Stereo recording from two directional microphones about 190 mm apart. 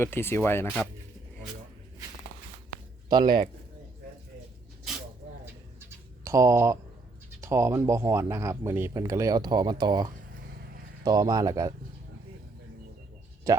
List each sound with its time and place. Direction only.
0.0 s speech: 10° left (ahead or behind)
3.1 s speech: 25° right (ahead or behind)
6.2 s speech: 15° right (ahead or behind)